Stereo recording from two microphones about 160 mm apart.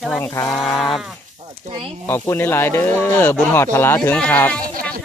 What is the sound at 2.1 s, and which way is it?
Speech, 15° left (ahead or behind).